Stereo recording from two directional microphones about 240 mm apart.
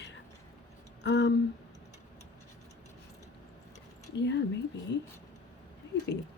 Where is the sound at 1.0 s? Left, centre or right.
Left.